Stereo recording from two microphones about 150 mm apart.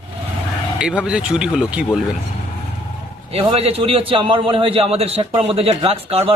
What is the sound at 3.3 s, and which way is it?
A man's voice, 40° right (ahead or behind).